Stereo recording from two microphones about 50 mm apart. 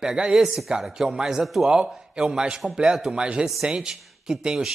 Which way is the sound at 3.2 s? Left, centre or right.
Centre.